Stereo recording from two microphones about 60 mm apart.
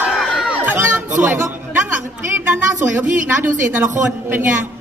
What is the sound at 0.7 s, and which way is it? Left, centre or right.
Music, right.